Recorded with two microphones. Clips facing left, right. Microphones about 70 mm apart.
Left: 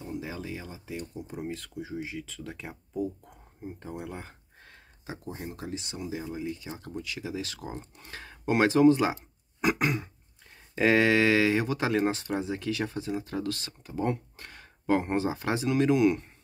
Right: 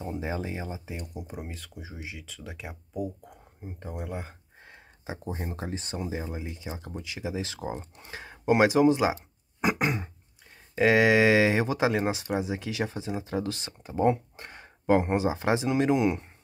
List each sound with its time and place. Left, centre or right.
0.0 s speech: right
1.1 s speech: centre
5.0 s speech: right
10.8 s speech: centre